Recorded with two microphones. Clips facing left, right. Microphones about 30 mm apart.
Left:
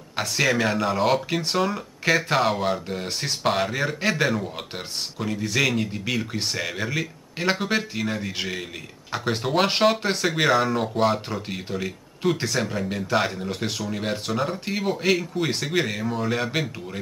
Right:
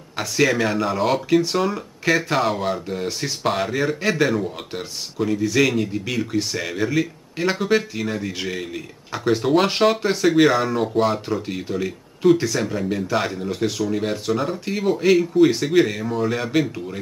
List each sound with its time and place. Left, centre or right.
0.1 s speech: centre